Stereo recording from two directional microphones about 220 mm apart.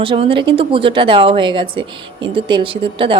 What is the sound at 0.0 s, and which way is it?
Speech, 25° right (ahead or behind).